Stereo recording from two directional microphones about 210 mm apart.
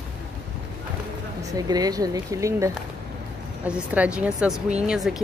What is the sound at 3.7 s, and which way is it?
Speech, 5° right (ahead or behind).